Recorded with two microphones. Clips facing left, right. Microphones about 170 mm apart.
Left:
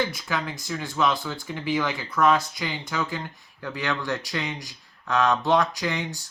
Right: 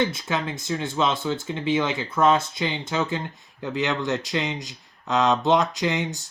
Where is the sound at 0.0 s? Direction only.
25° right (ahead or behind).